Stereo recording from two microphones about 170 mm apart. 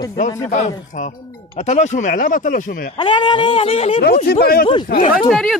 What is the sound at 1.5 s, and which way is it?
Speech, 45° left (ahead or behind).